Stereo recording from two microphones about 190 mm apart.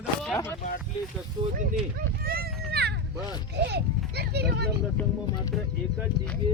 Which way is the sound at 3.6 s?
60° right (ahead or behind).